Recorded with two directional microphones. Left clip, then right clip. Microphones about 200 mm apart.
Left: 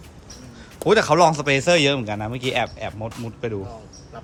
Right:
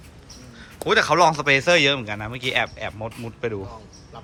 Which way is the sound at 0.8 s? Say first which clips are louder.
Left 1 dB; 20° left (ahead or behind).